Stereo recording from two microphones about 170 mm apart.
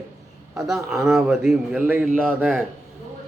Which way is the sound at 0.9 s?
Centre (ahead or behind).